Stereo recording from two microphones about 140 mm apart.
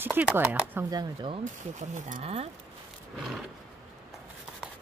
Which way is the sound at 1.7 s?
60° right (ahead or behind).